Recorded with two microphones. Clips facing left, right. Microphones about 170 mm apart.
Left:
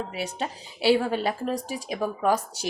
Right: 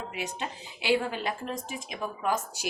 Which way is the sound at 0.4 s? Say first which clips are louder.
Left 8 dB; 35° left (ahead or behind).